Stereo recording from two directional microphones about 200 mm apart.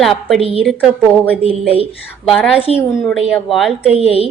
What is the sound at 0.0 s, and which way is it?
A woman's voice, centre (ahead or behind).